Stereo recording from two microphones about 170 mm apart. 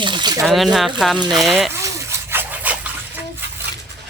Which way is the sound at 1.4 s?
Centre (ahead or behind).